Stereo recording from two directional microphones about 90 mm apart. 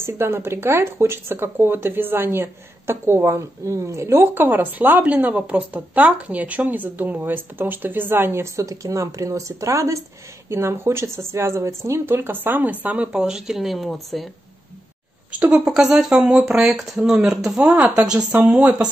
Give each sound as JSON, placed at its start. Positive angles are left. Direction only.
{"t": 0.0, "sound": "speech", "side_deg": -30}
{"t": 15.3, "sound": "speech", "side_deg": -15}